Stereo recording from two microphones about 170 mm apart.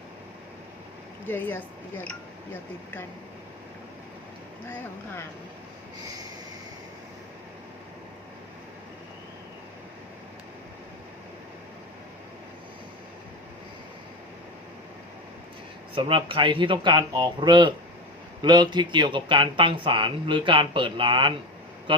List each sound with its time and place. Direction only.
1.3 s a woman's voice: 10° left (ahead or behind)
16.0 s speech: 30° right (ahead or behind)